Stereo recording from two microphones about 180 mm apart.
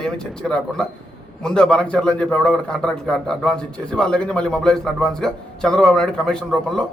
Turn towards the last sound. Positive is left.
turn(degrees=5)  # may be behind; listen again after turning